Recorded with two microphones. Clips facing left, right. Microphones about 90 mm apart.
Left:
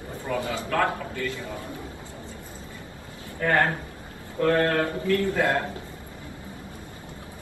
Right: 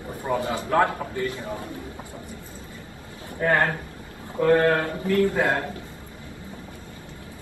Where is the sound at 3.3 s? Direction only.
20° right (ahead or behind).